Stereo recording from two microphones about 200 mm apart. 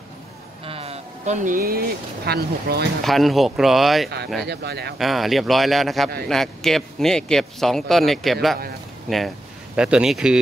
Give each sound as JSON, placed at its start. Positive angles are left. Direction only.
{"t": 0.7, "sound": "speech", "side_deg": -30}
{"t": 3.0, "sound": "speech", "side_deg": 0}
{"t": 4.5, "sound": "speech", "side_deg": -55}
{"t": 4.9, "sound": "speech", "side_deg": 0}
{"t": 9.8, "sound": "speech", "side_deg": -5}